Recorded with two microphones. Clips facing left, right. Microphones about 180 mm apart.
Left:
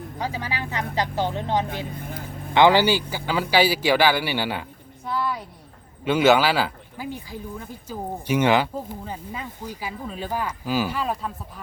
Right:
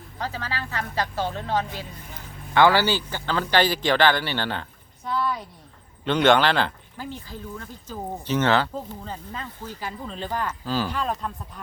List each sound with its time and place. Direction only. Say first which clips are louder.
0.2 s speech: left 1 dB; 15° left (ahead or behind)
5.0 s a sound: even; 10° left (ahead or behind)
6.1 s speech: left 1 dB; 5° left (ahead or behind)